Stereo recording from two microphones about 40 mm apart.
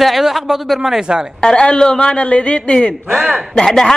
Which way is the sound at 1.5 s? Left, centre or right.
Left.